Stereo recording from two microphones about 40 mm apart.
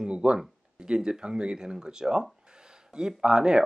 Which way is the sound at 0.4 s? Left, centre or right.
Right.